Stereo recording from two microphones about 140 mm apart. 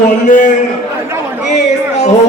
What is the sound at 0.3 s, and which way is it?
Speech, 65° left (ahead or behind).